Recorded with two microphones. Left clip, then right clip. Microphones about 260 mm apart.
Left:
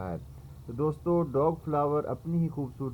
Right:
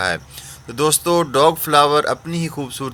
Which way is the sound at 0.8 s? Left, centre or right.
Right.